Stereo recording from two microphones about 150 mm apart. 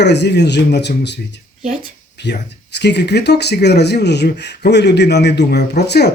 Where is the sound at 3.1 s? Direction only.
90° left.